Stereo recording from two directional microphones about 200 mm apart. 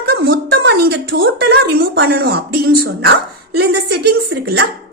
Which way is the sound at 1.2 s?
50° right (ahead or behind).